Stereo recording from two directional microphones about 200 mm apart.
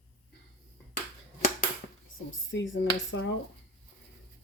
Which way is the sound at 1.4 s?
40° left (ahead or behind).